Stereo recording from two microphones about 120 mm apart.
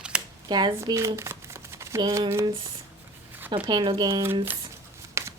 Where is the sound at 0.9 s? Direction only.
25° right (ahead or behind).